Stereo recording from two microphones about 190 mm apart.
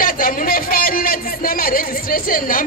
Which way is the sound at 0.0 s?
45° left (ahead or behind).